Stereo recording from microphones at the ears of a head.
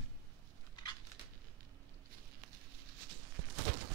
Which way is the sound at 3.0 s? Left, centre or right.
Right.